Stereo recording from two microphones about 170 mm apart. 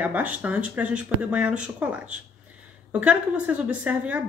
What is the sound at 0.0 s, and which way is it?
Speech, 10° right (ahead or behind).